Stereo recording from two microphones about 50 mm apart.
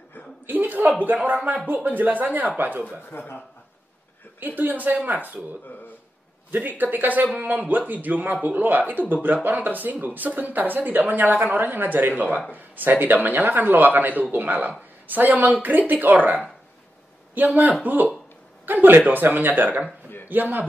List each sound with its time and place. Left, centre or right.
0.5 s speech: right
3.1 s speech: left
4.4 s speech: right
6.5 s speech: right
17.5 s speech: right